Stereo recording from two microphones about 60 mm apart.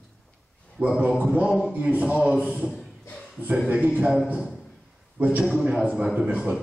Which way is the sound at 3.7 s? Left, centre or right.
Right.